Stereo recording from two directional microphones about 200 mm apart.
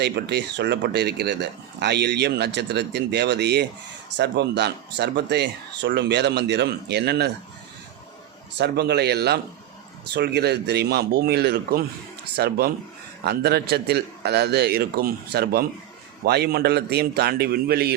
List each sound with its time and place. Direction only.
0.0 s speech: 55° right (ahead or behind)
8.5 s a man's voice: 55° right (ahead or behind)